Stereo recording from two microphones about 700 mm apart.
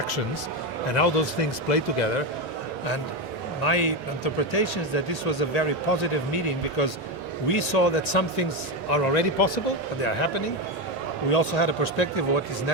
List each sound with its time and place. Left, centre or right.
0.9 s speech: left
3.6 s speech: left